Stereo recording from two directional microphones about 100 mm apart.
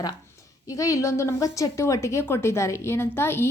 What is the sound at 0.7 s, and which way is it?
A woman's voice, 35° left (ahead or behind).